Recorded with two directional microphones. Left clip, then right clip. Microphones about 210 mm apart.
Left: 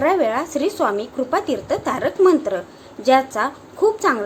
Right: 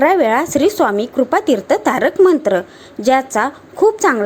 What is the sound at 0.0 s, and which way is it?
A woman's voice, 35° right (ahead or behind).